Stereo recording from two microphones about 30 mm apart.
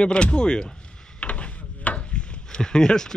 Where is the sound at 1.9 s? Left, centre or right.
Left.